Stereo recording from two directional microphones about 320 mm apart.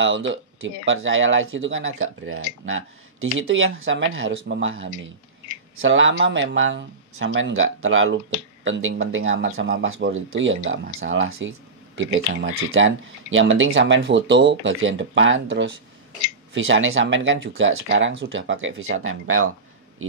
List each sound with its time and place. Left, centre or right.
0.0 s speech: right